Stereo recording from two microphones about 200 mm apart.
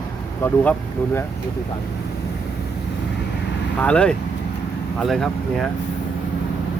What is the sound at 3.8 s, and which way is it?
Speech, 5° left (ahead or behind).